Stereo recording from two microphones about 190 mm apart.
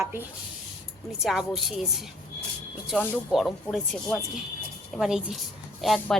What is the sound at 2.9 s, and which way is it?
Speech, centre (ahead or behind).